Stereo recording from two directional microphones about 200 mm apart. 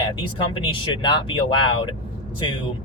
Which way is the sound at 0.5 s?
25° left (ahead or behind).